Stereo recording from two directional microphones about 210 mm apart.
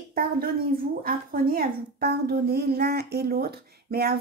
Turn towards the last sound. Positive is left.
turn(degrees=-50)  # may be behind; listen again after turning